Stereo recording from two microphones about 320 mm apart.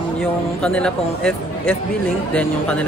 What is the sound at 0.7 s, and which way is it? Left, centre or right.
Speech, centre.